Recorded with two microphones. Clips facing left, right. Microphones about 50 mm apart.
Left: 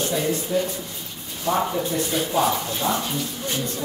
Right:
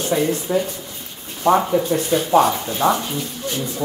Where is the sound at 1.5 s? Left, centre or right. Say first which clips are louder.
Right 8 dB; right.